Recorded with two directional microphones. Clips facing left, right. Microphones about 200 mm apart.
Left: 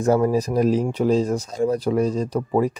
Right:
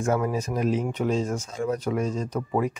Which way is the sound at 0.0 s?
35° left (ahead or behind).